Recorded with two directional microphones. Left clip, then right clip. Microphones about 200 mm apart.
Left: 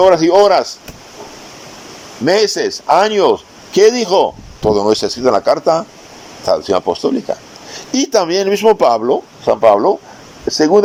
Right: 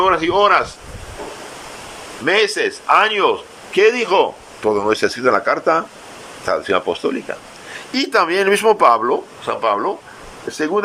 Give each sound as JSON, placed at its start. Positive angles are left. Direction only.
{"t": 0.0, "sound": "speech", "side_deg": 35}
{"t": 2.2, "sound": "speech", "side_deg": 35}